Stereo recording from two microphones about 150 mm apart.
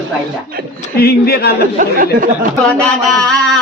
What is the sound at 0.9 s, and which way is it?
Speech, 90° left.